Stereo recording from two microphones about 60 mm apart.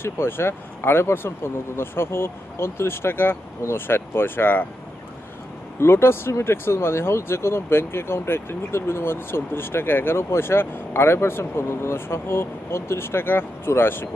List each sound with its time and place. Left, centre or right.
0.0 s speech: left
5.8 s speech: left